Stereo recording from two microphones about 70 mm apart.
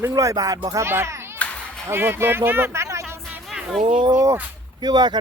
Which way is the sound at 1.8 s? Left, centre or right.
Right.